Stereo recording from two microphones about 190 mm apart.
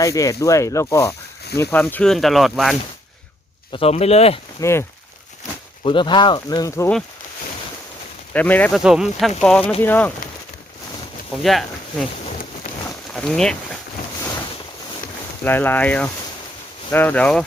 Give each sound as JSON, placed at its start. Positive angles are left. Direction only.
{"t": 0.0, "sound": "speech", "side_deg": 15}
{"t": 3.7, "sound": "speech", "side_deg": 30}
{"t": 4.6, "sound": "speech", "side_deg": 15}
{"t": 5.8, "sound": "speech", "side_deg": 25}
{"t": 8.3, "sound": "speech", "side_deg": 10}
{"t": 8.8, "sound": "speech", "side_deg": -5}
{"t": 11.4, "sound": "speech", "side_deg": 0}
{"t": 13.1, "sound": "speech", "side_deg": 0}
{"t": 15.4, "sound": "speech", "side_deg": 10}